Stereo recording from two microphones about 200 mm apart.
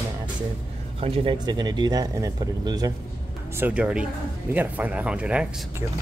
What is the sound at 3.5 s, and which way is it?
Speech, 5° right (ahead or behind).